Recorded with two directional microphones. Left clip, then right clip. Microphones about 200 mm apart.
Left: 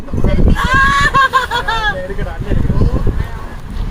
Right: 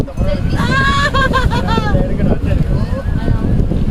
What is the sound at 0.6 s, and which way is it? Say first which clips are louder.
Vehicle: left 3 dB; 25° left (ahead or behind).